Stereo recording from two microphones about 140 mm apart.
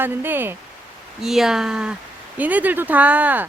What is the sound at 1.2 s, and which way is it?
Speech, centre (ahead or behind).